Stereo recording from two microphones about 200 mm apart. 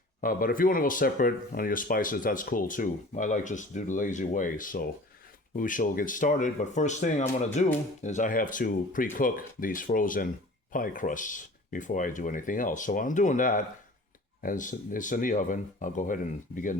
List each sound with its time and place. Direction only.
0.2 s speech: 45° left (ahead or behind)